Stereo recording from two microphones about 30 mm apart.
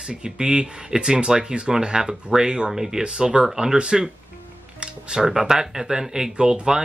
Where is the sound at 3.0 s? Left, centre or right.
Right.